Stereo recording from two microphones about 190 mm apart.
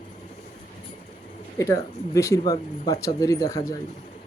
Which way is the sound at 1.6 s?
15° left (ahead or behind).